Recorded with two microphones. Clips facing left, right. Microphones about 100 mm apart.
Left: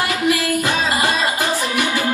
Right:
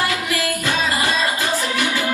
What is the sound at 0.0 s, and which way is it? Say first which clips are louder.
Music: left 3 dB; 20° left (ahead or behind).